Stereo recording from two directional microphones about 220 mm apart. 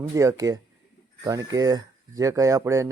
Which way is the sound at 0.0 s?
15° right (ahead or behind).